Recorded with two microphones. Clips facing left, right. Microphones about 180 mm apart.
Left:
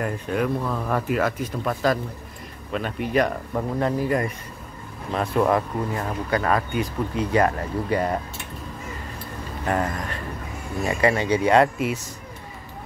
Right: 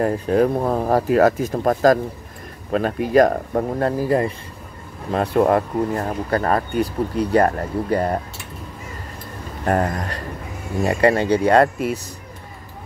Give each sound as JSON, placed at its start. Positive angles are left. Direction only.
{"t": 0.0, "sound": "speech", "side_deg": -35}
{"t": 9.7, "sound": "speech", "side_deg": -40}